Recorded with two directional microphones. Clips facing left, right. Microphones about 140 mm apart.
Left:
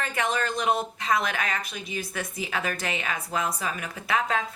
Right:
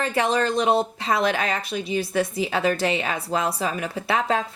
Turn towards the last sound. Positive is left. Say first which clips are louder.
# right 4 dB
turn(degrees=-30)  # may be behind; listen again after turning